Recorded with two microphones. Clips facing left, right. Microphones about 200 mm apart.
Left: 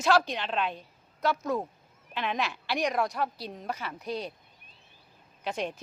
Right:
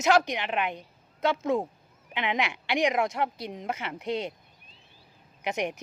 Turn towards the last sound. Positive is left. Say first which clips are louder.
# right 3 dB
turn(degrees=-20)  # may be behind; listen again after turning